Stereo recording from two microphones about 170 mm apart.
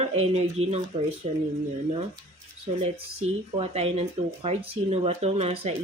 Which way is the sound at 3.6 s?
35° right (ahead or behind).